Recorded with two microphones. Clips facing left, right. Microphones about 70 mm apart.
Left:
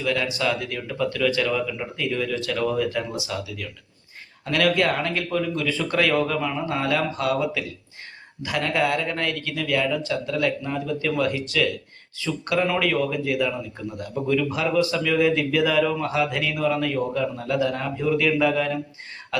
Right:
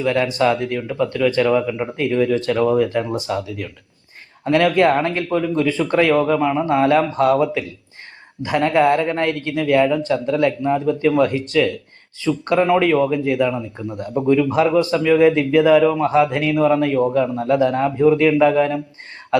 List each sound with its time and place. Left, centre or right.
0.0 s speech: right
0.9 s speech: right